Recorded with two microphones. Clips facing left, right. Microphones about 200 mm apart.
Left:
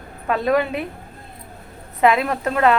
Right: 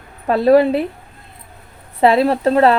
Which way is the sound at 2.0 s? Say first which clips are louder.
Right 5 dB; 30° right (ahead or behind).